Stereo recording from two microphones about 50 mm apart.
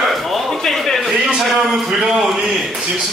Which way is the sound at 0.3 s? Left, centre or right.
Centre.